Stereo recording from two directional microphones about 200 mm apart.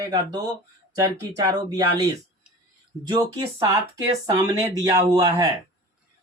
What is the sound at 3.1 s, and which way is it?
Speech, 15° right (ahead or behind).